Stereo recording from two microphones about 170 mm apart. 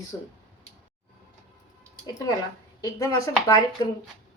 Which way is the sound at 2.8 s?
20° left (ahead or behind).